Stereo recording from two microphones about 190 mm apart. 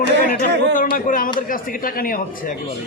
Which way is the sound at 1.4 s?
45° left (ahead or behind).